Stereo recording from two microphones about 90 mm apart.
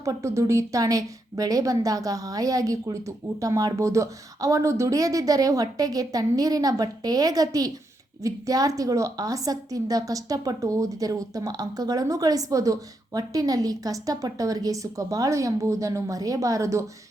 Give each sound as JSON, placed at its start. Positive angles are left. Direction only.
{"t": 0.0, "sound": "a woman's voice", "side_deg": -35}